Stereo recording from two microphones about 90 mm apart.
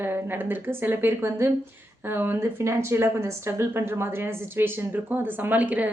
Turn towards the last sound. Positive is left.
turn(degrees=-15)  # may be behind; listen again after turning